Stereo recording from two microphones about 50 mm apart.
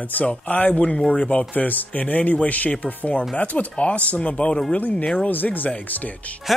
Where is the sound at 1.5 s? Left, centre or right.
Left.